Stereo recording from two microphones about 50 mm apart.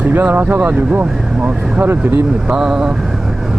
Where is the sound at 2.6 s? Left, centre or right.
Centre.